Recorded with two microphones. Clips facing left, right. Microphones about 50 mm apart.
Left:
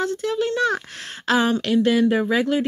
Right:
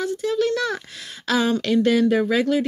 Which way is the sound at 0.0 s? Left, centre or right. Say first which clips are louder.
Right 1 dB; left.